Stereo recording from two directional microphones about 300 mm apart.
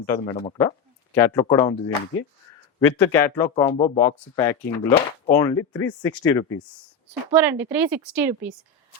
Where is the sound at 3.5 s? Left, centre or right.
Centre.